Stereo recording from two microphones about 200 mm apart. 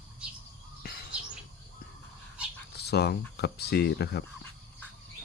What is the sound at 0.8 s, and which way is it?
Bird, 50° left (ahead or behind).